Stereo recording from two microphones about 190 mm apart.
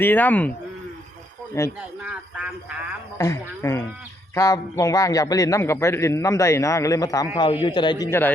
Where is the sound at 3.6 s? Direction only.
15° left (ahead or behind).